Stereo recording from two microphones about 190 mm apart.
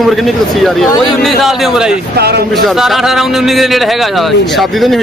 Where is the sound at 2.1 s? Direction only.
55° right (ahead or behind).